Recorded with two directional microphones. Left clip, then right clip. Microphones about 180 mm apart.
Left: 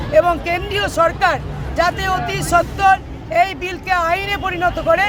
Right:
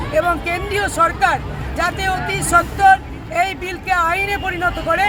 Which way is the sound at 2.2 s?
35° left (ahead or behind).